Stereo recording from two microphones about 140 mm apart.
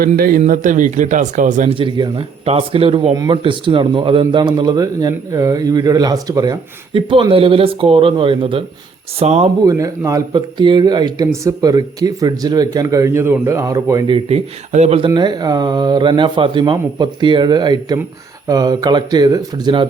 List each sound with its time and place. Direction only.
0.0 s speech: 90° right; by 1.7 s 60° right (ahead or behind)
1.7 s a man's voice: 40° right (ahead or behind)
9.6 s speech: 20° right (ahead or behind)
14.1 s speech: 50° right (ahead or behind)
15.1 s a man's voice: 30° right (ahead or behind)